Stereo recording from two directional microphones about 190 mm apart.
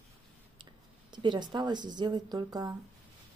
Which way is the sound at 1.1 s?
25° right (ahead or behind).